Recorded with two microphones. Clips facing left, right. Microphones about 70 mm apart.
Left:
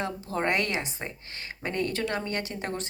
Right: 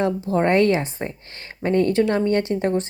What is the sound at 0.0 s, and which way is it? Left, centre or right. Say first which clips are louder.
Speech: right 9 dB; right.